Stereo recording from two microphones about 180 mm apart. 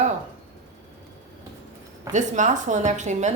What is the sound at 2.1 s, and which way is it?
Speech, 45° right (ahead or behind).